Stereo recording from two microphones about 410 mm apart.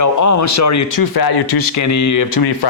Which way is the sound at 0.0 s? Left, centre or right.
Left.